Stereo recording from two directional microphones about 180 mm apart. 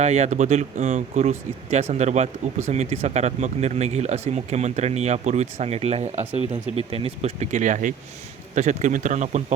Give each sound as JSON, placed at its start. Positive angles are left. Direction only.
{"t": 0.0, "sound": "speech", "side_deg": -40}